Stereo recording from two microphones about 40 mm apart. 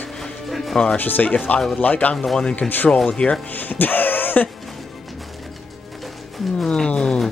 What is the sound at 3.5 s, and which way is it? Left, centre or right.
Music, left.